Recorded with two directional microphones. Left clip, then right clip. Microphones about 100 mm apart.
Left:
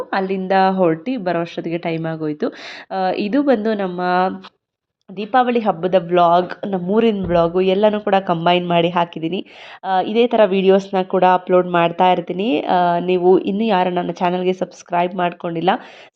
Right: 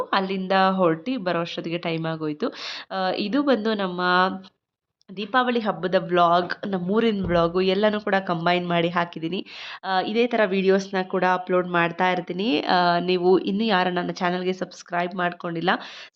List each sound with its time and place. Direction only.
0.1 s speech: 25° left (ahead or behind)
5.1 s speech: 35° left (ahead or behind)
6.0 s speech: 25° left (ahead or behind)
7.3 s speech: 20° left (ahead or behind)
8.1 s speech: 35° left (ahead or behind)
9.8 s speech: 25° left (ahead or behind)
10.2 s speech: 35° left (ahead or behind)
12.5 s speech: 15° left (ahead or behind); by 15.1 s 40° left (ahead or behind)
15.1 s speech: 30° left (ahead or behind)